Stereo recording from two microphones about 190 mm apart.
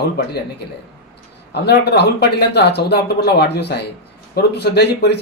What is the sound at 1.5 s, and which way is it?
A man's voice, 60° left (ahead or behind).